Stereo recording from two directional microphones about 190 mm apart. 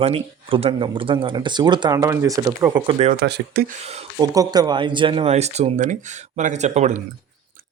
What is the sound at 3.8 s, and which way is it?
Speech, 35° right (ahead or behind).